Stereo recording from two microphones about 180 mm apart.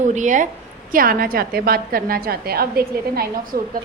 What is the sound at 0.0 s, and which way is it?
Speech, 45° right (ahead or behind).